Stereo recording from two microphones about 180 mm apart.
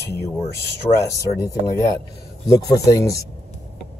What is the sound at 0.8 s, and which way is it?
Speech, 20° left (ahead or behind).